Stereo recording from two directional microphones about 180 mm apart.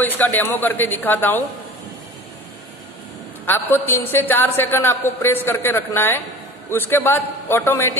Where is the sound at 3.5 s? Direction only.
10° left (ahead or behind).